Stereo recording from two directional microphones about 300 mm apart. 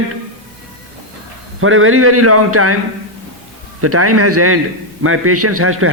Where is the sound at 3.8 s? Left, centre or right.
Right.